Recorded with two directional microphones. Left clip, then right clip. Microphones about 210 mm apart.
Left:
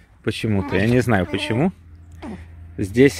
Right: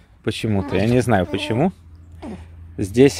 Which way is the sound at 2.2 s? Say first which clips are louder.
Even; centre (ahead or behind).